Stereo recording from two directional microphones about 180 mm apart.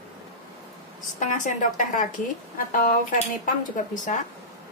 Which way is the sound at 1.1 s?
45° left (ahead or behind).